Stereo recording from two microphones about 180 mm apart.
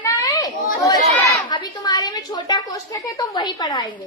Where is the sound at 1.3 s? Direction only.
25° left (ahead or behind).